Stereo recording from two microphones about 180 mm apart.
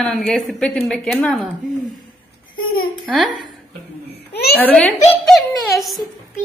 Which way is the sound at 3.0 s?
Centre (ahead or behind).